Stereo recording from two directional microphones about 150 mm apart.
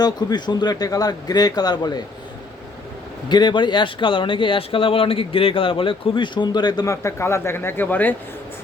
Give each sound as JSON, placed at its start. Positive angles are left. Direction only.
{"t": 0.0, "sound": "speech", "side_deg": 25}
{"t": 3.2, "sound": "speech", "side_deg": 30}